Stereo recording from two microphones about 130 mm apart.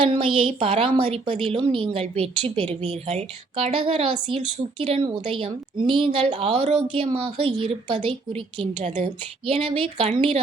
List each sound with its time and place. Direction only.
0.0 s a woman's voice: 45° right (ahead or behind)
3.7 s a woman's voice: 45° right (ahead or behind)
5.0 s a woman's voice: 40° right (ahead or behind)